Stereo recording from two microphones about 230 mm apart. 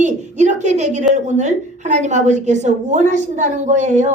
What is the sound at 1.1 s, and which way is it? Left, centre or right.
A woman's voice, right.